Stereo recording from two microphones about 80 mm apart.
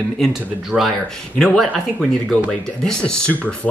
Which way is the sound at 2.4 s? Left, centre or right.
Centre.